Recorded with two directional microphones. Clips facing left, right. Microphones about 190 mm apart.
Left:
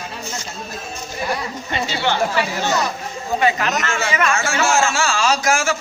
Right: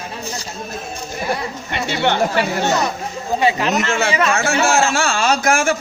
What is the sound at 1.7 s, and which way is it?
Speech, 60° right (ahead or behind).